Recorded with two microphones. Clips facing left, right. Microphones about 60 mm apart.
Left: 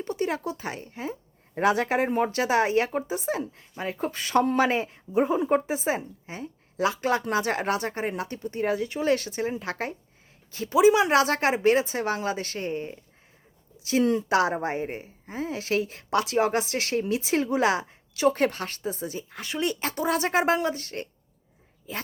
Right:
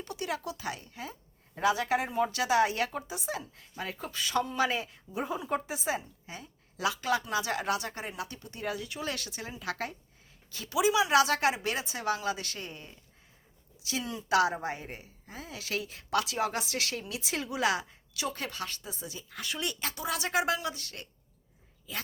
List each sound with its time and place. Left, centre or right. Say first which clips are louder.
0.0 s a woman's voice: left 7 dB; left
1.5 s a woman's voice: left 5 dB; left
3.9 s a woman's voice: left 7 dB; left
14.0 s speech: left 15 dB; left
14.3 s a woman's voice: left 3 dB; left
19.3 s a woman's voice: left 6 dB; left